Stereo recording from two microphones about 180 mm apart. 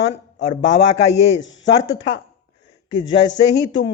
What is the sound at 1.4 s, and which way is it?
Speech, 90° left.